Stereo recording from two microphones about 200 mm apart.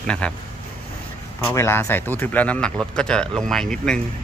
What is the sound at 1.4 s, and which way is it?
Speech, 10° left (ahead or behind).